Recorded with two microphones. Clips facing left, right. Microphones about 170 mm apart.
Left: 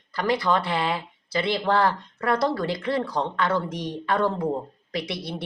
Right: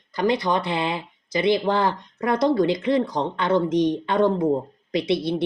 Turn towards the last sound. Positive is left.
turn(degrees=-20)  # may be behind; listen again after turning